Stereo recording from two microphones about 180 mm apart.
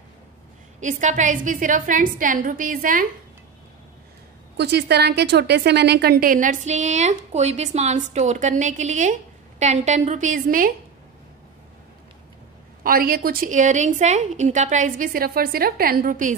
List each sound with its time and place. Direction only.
0.7 s a woman's voice: 45° right (ahead or behind)
4.6 s a woman's voice: 65° right (ahead or behind); by 10.7 s 50° right (ahead or behind)
12.8 s a woman's voice: 55° right (ahead or behind)